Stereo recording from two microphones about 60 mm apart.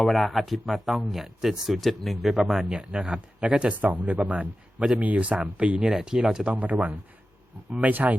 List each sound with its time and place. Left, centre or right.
0.0 s speech: centre
2.6 s speech: centre
3.8 s speech: right; by 6.5 s centre
6.5 s speech: right